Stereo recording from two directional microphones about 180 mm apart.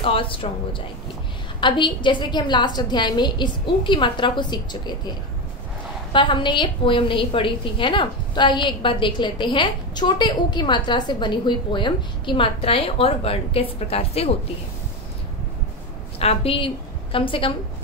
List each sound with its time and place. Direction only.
0.0 s a woman's voice: 30° left (ahead or behind)
6.1 s a woman's voice: 25° left (ahead or behind)
16.2 s a woman's voice: 30° left (ahead or behind)